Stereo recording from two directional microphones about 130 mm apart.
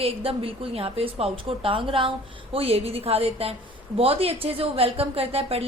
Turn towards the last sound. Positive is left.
turn(degrees=-50)  # may be behind; listen again after turning